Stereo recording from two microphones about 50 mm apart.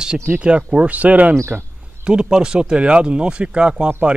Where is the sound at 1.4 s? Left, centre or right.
Right.